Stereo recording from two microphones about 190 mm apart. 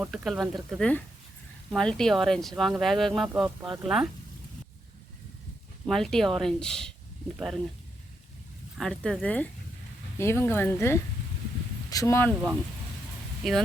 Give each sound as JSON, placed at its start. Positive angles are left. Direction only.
{"t": 0.0, "sound": "speech", "side_deg": 0}
{"t": 5.8, "sound": "speech", "side_deg": 0}
{"t": 8.8, "sound": "speech", "side_deg": 5}